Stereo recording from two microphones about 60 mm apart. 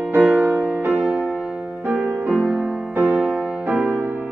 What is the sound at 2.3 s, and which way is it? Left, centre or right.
Music, centre.